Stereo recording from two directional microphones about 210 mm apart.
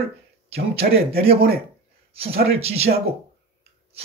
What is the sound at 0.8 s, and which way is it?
Speech, 45° right (ahead or behind).